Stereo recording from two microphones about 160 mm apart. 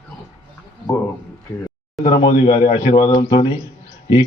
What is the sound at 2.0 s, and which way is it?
Speech, 35° left (ahead or behind).